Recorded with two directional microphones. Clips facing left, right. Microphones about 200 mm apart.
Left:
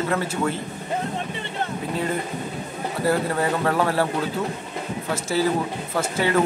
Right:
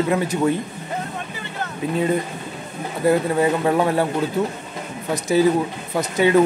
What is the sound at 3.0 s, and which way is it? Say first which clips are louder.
A man's voice: right 5 dB; 15° right (ahead or behind).